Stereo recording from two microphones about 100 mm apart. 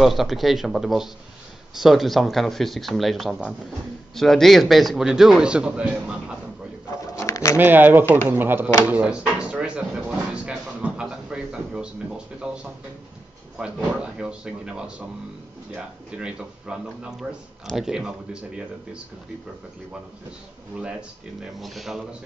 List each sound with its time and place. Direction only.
0.0 s a man's voice: centre (ahead or behind)
7.2 s bird: 30° left (ahead or behind)
7.5 s speech: 20° right (ahead or behind)
8.8 s a sound: 15° right (ahead or behind)
13.6 s speech: 10° right (ahead or behind)
16.2 s speech: 10° right (ahead or behind)
21.5 s a man's voice: centre (ahead or behind)